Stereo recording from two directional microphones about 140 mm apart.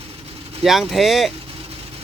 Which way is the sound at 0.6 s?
Centre (ahead or behind).